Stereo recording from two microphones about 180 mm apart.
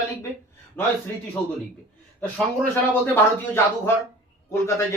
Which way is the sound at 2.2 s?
5° left (ahead or behind).